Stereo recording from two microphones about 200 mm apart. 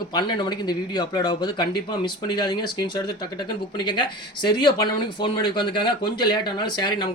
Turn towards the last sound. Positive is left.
turn(degrees=20)  # may be behind; listen again after turning